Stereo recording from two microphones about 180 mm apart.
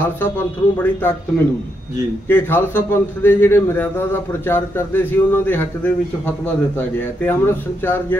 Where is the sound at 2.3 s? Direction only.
10° left (ahead or behind).